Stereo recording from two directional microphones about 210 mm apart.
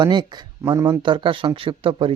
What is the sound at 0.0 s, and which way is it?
Speech, 20° right (ahead or behind).